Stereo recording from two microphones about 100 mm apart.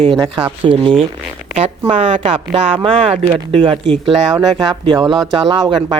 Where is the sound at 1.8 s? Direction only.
65° right (ahead or behind).